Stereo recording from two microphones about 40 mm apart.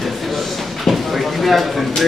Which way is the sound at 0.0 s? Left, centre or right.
Centre.